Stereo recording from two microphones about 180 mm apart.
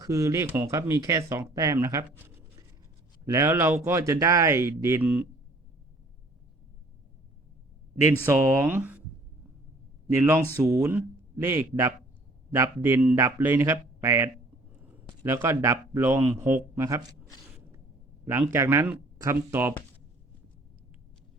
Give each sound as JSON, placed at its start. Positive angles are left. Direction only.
{"t": 0.0, "sound": "speech", "side_deg": -20}
{"t": 8.2, "sound": "speech", "side_deg": -15}
{"t": 10.1, "sound": "speech", "side_deg": -15}
{"t": 18.3, "sound": "speech", "side_deg": -15}